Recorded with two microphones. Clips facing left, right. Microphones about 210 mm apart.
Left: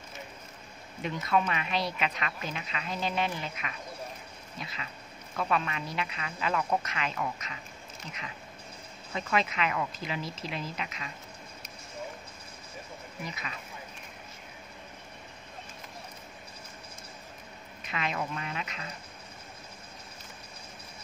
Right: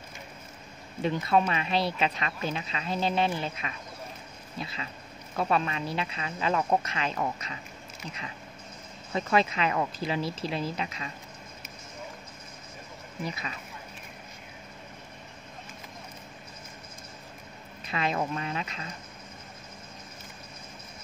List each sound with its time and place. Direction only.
1.0 s a woman's voice: 30° right (ahead or behind)
9.1 s a woman's voice: 35° right (ahead or behind)
17.8 s a woman's voice: 35° right (ahead or behind)